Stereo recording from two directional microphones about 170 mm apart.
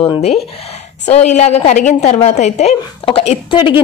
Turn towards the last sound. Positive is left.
turn(degrees=30)  # may be behind; listen again after turning